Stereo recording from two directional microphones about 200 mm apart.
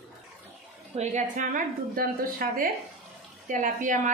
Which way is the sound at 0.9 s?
40° right (ahead or behind).